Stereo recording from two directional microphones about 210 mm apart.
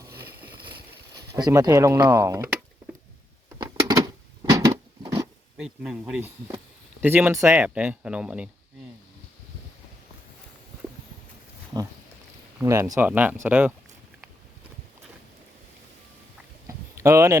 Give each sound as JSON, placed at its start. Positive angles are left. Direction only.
{"t": 1.3, "sound": "speech", "side_deg": -15}
{"t": 3.8, "sound": "a sound", "side_deg": -15}
{"t": 5.5, "sound": "speech", "side_deg": 0}
{"t": 12.5, "sound": "speech", "side_deg": -15}
{"t": 17.0, "sound": "speech", "side_deg": -15}